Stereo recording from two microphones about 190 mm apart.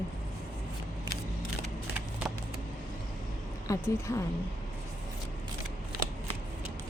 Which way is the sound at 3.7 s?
15° left (ahead or behind).